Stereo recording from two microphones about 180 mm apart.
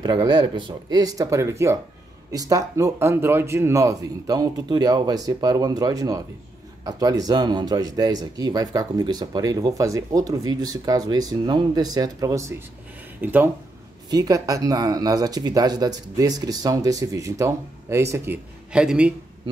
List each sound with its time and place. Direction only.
0.0 s speech: 25° right (ahead or behind)
14.1 s speech: 20° right (ahead or behind)